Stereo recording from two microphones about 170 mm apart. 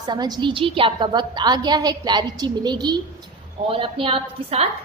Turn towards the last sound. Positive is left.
turn(degrees=-35)  # may be behind; listen again after turning